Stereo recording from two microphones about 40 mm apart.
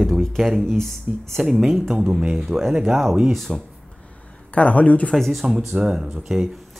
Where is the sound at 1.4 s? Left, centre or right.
Centre.